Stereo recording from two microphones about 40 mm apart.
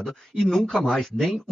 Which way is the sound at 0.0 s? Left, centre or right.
Centre.